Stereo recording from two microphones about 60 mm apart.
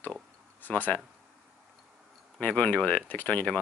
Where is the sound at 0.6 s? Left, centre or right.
Left.